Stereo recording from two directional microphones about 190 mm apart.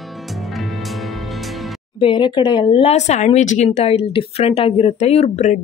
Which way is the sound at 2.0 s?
25° left (ahead or behind).